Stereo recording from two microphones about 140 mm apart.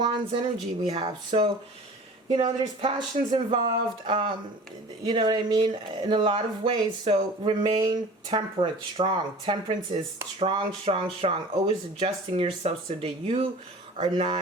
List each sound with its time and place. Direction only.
0.0 s speech: 35° right (ahead or behind)